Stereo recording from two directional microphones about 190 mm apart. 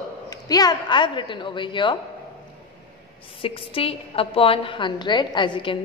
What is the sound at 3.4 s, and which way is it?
A woman's voice, 30° left (ahead or behind).